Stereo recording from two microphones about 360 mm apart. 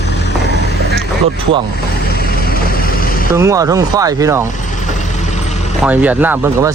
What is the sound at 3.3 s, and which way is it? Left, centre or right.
Speech, centre.